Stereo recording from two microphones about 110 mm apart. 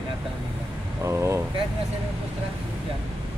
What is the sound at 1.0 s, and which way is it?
Vehicle, 25° right (ahead or behind).